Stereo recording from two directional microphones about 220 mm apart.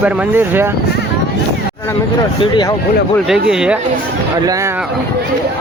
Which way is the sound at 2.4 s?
20° left (ahead or behind).